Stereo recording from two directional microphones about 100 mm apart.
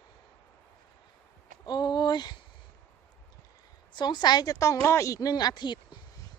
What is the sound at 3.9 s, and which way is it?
A woman's voice, 45° left (ahead or behind).